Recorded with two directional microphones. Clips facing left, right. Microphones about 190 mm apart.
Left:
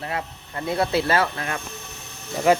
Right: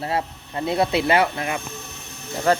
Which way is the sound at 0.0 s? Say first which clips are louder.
Right 4 dB; 30° right (ahead or behind).